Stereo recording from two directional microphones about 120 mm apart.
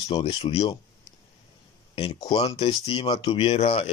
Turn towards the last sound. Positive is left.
turn(degrees=60)  # may be behind; listen again after turning